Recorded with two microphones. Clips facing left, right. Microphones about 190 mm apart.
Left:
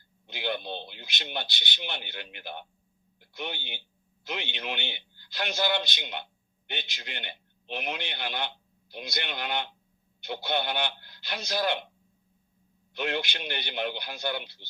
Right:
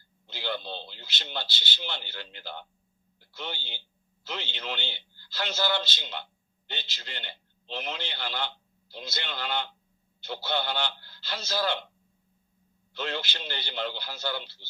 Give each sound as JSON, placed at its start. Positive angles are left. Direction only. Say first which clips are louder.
{"t": 0.3, "sound": "a man's voice", "louder": "left 2 dB", "side_deg": 20}
{"t": 12.9, "sound": "a man's voice", "louder": "left 3 dB", "side_deg": 15}